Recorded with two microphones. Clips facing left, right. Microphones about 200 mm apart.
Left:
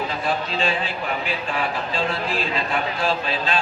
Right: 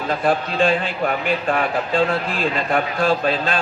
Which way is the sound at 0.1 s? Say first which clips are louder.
Right 5 dB; 50° right (ahead or behind).